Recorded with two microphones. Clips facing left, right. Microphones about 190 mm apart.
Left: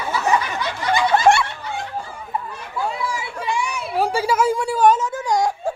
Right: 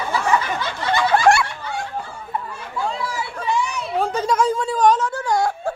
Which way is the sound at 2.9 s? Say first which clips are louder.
Even; 10° left (ahead or behind).